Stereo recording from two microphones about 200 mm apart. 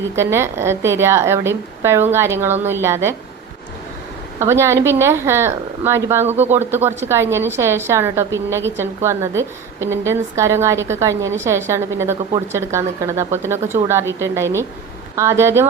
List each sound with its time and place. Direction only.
0.2 s a woman's voice: 15° right (ahead or behind)
4.4 s a woman's voice: 15° right (ahead or behind)
6.2 s speech: 35° right (ahead or behind)
6.5 s a woman's voice: 10° right (ahead or behind)